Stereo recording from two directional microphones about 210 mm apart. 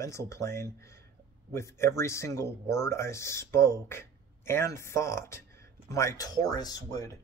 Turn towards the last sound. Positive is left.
turn(degrees=15)  # may be behind; listen again after turning